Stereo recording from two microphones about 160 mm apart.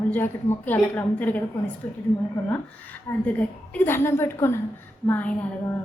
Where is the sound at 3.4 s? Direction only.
10° left (ahead or behind).